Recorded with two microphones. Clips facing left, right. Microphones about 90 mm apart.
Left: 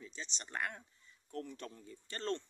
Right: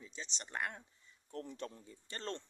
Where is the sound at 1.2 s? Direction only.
25° right (ahead or behind).